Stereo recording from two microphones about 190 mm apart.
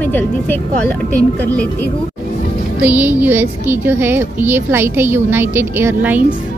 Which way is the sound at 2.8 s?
10° right (ahead or behind).